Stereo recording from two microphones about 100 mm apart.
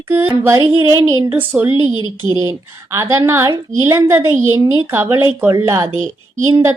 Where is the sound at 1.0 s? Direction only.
35° right (ahead or behind).